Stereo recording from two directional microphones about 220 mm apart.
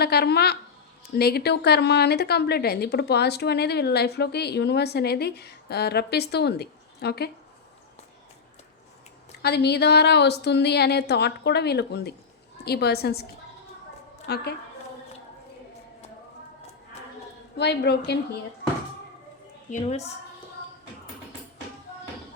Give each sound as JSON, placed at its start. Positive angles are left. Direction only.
{"t": 0.0, "sound": "a woman's voice", "side_deg": 45}
{"t": 9.4, "sound": "a woman's voice", "side_deg": 50}
{"t": 14.3, "sound": "a woman's voice", "side_deg": 45}
{"t": 17.6, "sound": "a woman's voice", "side_deg": 50}
{"t": 19.7, "sound": "a woman's voice", "side_deg": 30}